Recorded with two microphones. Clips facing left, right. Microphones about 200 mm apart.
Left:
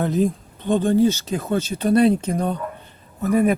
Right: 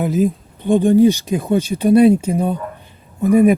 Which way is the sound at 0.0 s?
5° right (ahead or behind).